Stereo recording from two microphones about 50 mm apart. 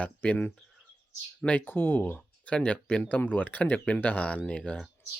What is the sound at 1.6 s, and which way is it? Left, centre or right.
Speech, left.